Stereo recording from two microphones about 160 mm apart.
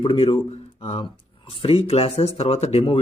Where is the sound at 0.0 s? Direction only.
30° left (ahead or behind).